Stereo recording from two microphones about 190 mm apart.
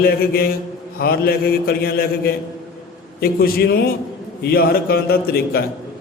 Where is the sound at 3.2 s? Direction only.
55° left (ahead or behind).